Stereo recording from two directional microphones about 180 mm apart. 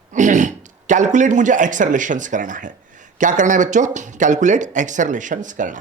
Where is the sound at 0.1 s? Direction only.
45° right (ahead or behind).